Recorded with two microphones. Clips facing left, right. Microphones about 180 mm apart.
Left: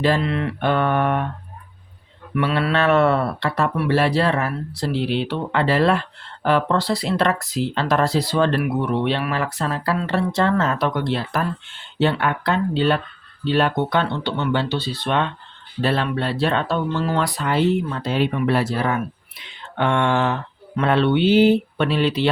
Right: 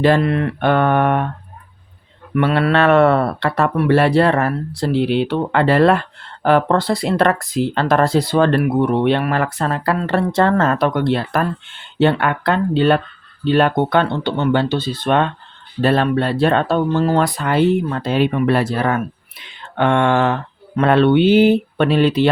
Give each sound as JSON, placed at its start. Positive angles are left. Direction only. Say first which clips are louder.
{"t": 0.0, "sound": "speech", "louder": "right 5 dB", "side_deg": -55}
{"t": 2.3, "sound": "speech", "louder": "right 5 dB", "side_deg": -50}